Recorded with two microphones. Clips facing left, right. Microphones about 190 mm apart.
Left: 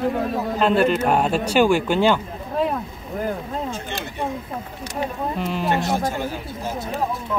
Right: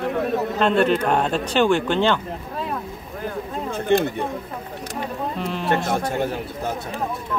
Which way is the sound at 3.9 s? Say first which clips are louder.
Right 13 dB; 55° right (ahead or behind).